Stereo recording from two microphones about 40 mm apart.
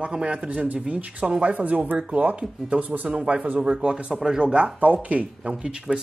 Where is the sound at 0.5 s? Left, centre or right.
Right.